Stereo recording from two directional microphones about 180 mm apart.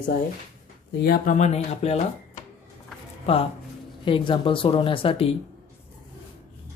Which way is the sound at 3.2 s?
30° left (ahead or behind).